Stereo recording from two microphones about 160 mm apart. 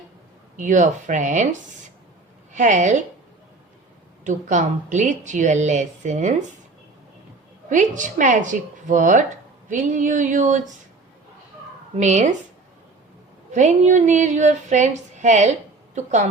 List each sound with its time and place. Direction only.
0.5 s a woman's voice: 50° right (ahead or behind)
2.5 s a woman's voice: 50° right (ahead or behind)
4.2 s a woman's voice: 50° right (ahead or behind)
7.7 s a woman's voice: 50° right (ahead or behind)
11.9 s a woman's voice: 45° right (ahead or behind)
13.5 s a woman's voice: 50° right (ahead or behind)